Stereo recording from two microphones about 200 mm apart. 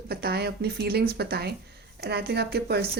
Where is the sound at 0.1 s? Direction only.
50° right (ahead or behind).